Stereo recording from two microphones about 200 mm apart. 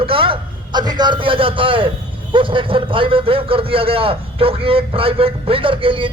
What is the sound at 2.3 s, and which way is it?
A man's voice, 25° right (ahead or behind).